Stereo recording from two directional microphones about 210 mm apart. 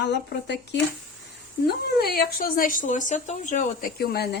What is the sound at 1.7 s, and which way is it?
Speech, 50° left (ahead or behind).